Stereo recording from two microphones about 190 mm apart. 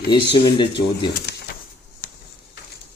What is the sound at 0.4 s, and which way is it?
Speech, 25° left (ahead or behind).